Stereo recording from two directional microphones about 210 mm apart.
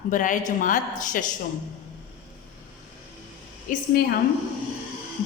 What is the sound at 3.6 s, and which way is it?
Speech, 45° left (ahead or behind).